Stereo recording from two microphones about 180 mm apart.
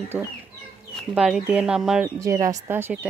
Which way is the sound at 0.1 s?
10° right (ahead or behind).